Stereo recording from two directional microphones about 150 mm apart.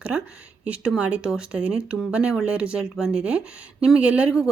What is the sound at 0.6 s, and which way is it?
Speech, 10° right (ahead or behind).